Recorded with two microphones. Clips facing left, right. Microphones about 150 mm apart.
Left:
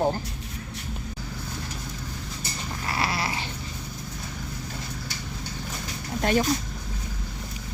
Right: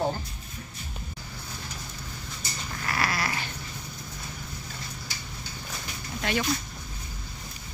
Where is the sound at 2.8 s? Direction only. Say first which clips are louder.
Left 1 dB; 25° left (ahead or behind).